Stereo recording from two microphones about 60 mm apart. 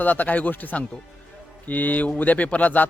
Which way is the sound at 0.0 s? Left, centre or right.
Left.